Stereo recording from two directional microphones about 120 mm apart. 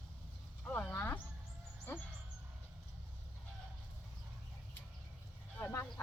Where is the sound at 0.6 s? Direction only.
20° left (ahead or behind).